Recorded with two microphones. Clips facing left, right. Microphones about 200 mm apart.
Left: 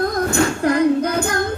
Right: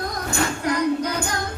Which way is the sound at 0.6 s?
50° left (ahead or behind).